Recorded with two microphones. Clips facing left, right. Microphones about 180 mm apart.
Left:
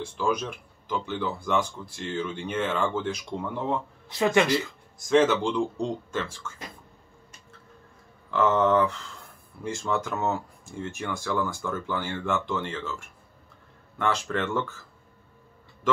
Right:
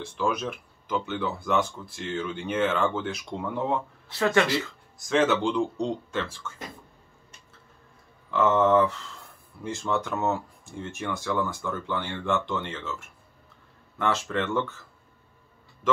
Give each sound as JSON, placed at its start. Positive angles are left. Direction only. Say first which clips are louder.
{"t": 0.0, "sound": "speech", "louder": "even", "side_deg": 0}
{"t": 4.1, "sound": "speech", "louder": "left 1 dB", "side_deg": 15}
{"t": 4.9, "sound": "speech", "louder": "left 2 dB", "side_deg": 0}
{"t": 8.3, "sound": "speech", "louder": "right 1 dB", "side_deg": 0}